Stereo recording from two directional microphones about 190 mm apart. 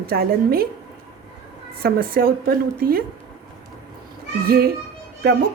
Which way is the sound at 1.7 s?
55° right (ahead or behind).